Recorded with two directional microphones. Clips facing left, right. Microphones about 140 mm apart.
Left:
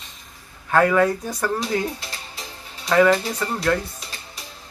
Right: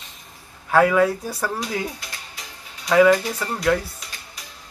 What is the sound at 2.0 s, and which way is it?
Music, 30° left (ahead or behind).